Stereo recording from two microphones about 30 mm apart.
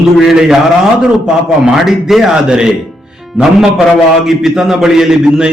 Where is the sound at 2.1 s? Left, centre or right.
Centre.